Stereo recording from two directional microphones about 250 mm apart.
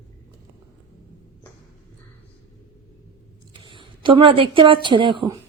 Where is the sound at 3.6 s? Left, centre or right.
Centre.